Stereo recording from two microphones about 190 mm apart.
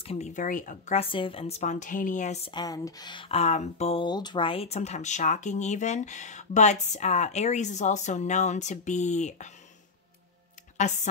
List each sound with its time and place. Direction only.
0.0 s speech: 35° left (ahead or behind)
1.1 s speech: 30° left (ahead or behind)
2.5 s speech: 20° left (ahead or behind); by 9.5 s 35° left (ahead or behind)
10.8 s speech: 40° left (ahead or behind)